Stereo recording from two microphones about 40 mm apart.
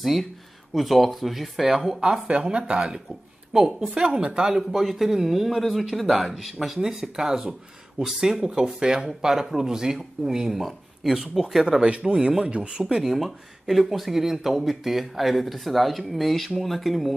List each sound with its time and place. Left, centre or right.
0.0 s speech: centre
2.0 s speech: right
3.5 s speech: centre
3.9 s speech: right
12.1 s speech: right; by 17.1 s centre